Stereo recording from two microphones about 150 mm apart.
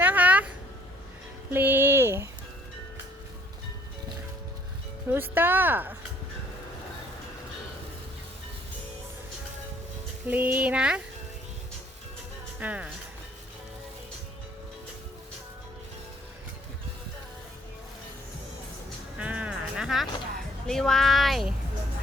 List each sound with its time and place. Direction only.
0.0 s a sound: 10° right (ahead or behind)
1.5 s a sound: 15° right (ahead or behind)
5.0 s speech: 15° right (ahead or behind)
10.2 s speech: 10° right (ahead or behind)
12.5 s speech: 10° right (ahead or behind)
19.2 s music: 10° right (ahead or behind)
20.7 s speech: 5° left (ahead or behind)